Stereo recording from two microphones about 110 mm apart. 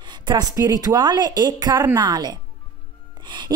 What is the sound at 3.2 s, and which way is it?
Music, 40° right (ahead or behind).